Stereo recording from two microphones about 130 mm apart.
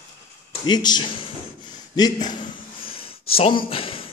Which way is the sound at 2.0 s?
30° left (ahead or behind).